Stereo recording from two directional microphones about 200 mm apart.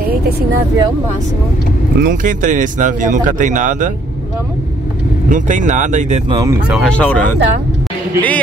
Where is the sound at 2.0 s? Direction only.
40° right (ahead or behind).